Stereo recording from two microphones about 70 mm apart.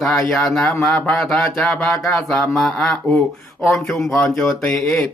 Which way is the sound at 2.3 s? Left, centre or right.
Centre.